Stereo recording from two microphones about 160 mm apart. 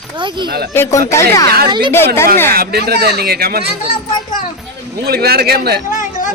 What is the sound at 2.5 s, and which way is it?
Speech, 80° right.